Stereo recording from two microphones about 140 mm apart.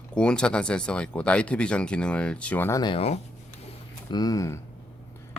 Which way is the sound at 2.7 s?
35° left (ahead or behind).